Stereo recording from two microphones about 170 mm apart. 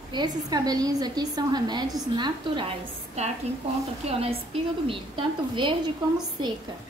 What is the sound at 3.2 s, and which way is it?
A woman's voice, 40° right (ahead or behind).